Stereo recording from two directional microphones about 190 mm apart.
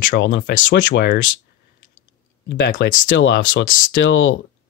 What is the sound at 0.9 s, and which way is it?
Speech, 45° left (ahead or behind).